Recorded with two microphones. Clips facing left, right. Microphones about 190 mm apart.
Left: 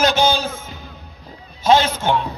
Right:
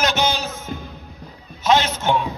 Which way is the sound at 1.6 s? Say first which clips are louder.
Left 3 dB; 30° left (ahead or behind).